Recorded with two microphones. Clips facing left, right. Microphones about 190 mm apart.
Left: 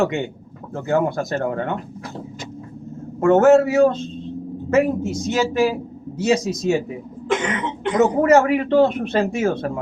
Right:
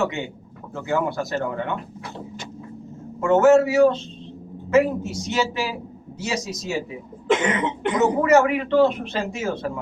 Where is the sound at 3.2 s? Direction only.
55° left (ahead or behind).